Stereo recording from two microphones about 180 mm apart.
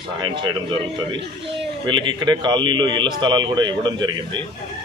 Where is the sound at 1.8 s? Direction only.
25° right (ahead or behind).